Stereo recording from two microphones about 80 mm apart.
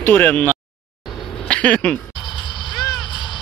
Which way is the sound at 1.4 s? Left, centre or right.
Centre.